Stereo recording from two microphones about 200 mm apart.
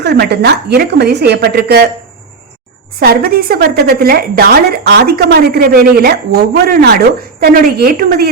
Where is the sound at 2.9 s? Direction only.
50° right (ahead or behind).